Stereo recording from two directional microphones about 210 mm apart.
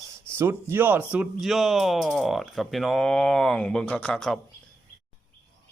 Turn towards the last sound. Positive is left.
turn(degrees=5)  # may be behind; listen again after turning